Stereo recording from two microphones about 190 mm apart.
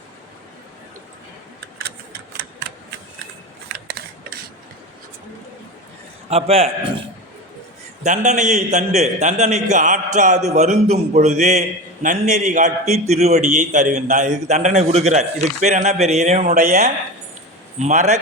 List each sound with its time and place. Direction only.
2.3 s typewriter: 55° right (ahead or behind)
6.3 s a man's voice: 30° right (ahead or behind)
8.0 s a man's voice: 40° right (ahead or behind)